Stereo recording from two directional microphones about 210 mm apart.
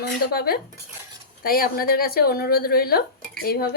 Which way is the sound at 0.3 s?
45° left (ahead or behind).